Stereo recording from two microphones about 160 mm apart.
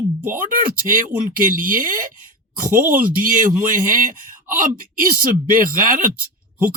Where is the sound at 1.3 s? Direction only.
60° right (ahead or behind).